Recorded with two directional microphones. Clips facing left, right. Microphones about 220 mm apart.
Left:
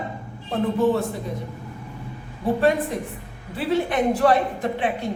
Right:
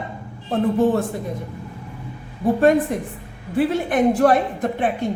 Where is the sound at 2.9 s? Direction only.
50° right (ahead or behind).